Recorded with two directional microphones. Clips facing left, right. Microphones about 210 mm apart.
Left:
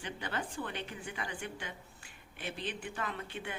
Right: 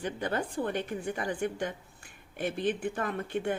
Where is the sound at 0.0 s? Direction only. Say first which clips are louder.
Right 7 dB; 45° right (ahead or behind).